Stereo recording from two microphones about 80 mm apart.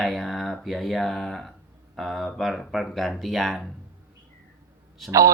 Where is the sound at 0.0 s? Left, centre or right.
Centre.